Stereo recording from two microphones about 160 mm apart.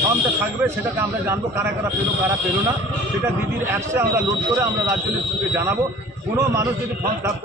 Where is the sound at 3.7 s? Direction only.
15° right (ahead or behind).